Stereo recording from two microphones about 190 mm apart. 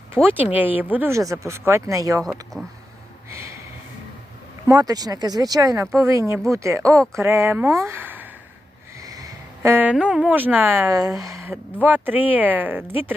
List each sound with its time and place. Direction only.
0.2 s speech: 5° left (ahead or behind)
0.5 s speech: 10° right (ahead or behind)
2.2 s speech: centre (ahead or behind)
3.3 s a sound: 15° right (ahead or behind)
4.6 s speech: 20° right (ahead or behind)
9.6 s speech: 10° right (ahead or behind)